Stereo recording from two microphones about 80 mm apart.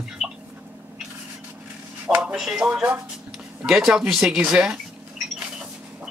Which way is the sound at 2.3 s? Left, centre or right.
Centre.